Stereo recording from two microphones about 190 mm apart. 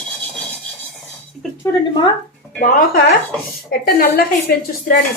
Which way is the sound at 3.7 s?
55° left (ahead or behind).